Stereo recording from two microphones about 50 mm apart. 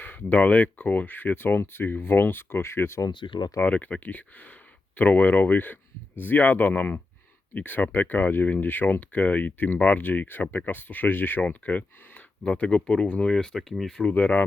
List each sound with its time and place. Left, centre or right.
0.0 s speech: left
3.6 s speech: left
11.4 s speech: left; by 13.9 s centre
14.1 s speech: left